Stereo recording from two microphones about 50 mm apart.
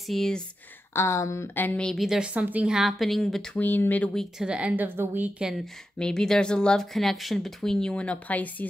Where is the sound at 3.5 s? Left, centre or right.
Left.